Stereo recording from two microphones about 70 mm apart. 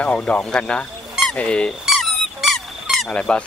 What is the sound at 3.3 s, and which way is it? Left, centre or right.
Speech, centre.